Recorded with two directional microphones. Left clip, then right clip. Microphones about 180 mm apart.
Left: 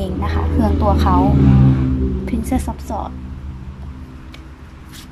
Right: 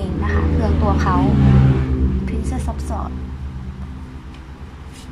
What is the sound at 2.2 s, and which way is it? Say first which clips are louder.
Speech: left 5 dB; 25° left (ahead or behind).